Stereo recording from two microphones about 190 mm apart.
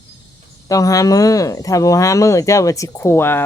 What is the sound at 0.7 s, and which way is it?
Speech, 15° left (ahead or behind).